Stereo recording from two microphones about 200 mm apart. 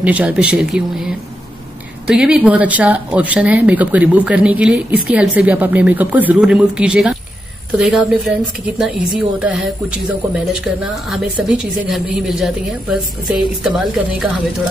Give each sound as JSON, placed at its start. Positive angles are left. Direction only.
{"t": 0.0, "sound": "speech", "side_deg": -5}